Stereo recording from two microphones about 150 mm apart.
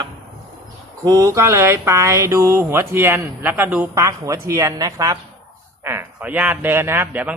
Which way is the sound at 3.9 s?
20° right (ahead or behind).